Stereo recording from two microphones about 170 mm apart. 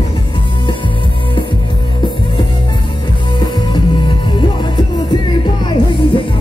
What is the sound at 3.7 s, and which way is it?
Music, 25° left (ahead or behind).